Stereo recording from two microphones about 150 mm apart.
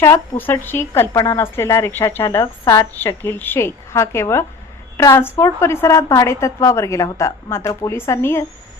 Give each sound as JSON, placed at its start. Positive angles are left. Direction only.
{"t": 0.0, "sound": "a woman's voice", "side_deg": 15}